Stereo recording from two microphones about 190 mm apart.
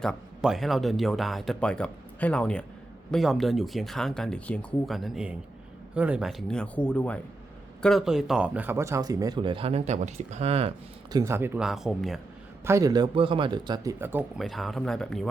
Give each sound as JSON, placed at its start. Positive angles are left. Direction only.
{"t": 0.0, "sound": "speech", "side_deg": 0}
{"t": 11.1, "sound": "speech", "side_deg": -15}
{"t": 12.6, "sound": "speech", "side_deg": -15}
{"t": 14.4, "sound": "speech", "side_deg": 0}